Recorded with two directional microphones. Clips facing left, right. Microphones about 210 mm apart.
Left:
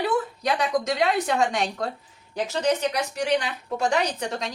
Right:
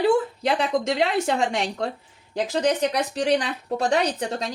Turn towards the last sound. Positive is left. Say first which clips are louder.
# right 2 dB
turn(degrees=-30)  # may be behind; listen again after turning